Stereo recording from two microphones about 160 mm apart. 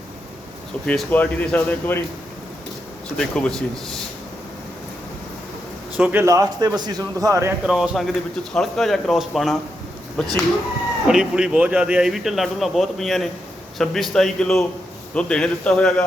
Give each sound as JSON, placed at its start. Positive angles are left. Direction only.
{"t": 0.9, "sound": "speech", "side_deg": 10}
{"t": 3.2, "sound": "a man's voice", "side_deg": 5}
{"t": 6.0, "sound": "a man's voice", "side_deg": -10}
{"t": 7.6, "sound": "a man's voice", "side_deg": -5}